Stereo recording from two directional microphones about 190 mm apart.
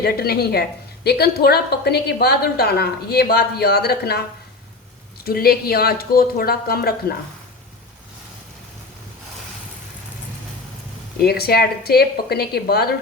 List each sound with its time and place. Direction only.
0.0 s a woman's voice: 55° left (ahead or behind)
5.2 s speech: 55° left (ahead or behind)
11.2 s a woman's voice: 55° left (ahead or behind)